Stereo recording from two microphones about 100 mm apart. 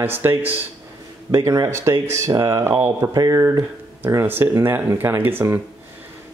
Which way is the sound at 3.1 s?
35° right (ahead or behind).